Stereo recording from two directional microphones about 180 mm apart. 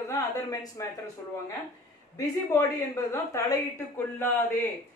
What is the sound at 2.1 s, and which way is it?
A woman's voice, 15° left (ahead or behind).